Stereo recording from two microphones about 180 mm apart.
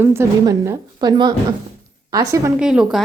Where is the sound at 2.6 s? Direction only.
5° right (ahead or behind).